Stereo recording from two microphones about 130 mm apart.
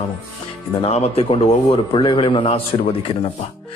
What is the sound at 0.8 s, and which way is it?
A man's voice, 55° left (ahead or behind).